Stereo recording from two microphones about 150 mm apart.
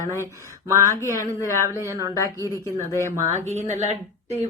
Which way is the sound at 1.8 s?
20° right (ahead or behind).